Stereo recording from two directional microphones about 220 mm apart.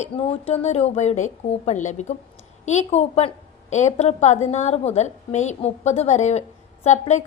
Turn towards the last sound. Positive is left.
turn(degrees=30)  # may be behind; listen again after turning